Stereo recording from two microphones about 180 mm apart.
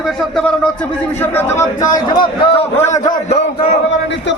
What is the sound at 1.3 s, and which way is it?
Speech, 15° left (ahead or behind).